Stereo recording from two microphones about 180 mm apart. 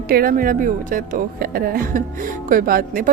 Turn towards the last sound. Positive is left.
turn(degrees=-50)  # may be behind; listen again after turning